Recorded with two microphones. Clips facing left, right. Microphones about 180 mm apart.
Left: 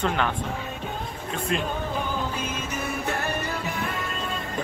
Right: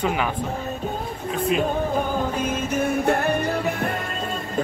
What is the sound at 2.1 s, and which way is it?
Music, 50° right (ahead or behind).